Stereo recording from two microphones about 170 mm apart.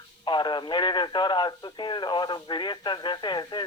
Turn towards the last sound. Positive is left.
turn(degrees=25)  # may be behind; listen again after turning